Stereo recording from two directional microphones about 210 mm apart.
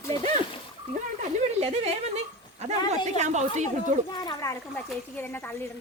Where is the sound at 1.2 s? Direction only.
30° right (ahead or behind).